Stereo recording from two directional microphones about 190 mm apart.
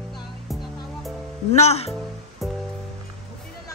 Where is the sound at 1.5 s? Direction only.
35° left (ahead or behind).